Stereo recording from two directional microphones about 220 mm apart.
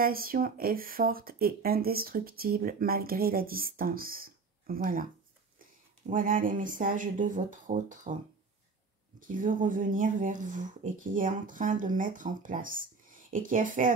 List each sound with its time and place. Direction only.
0.0 s speech: 40° right (ahead or behind)
6.0 s speech: 40° right (ahead or behind)
9.2 s speech: 35° right (ahead or behind)